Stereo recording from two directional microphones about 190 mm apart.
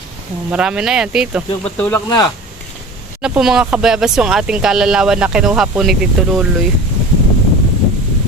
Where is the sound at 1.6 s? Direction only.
5° left (ahead or behind).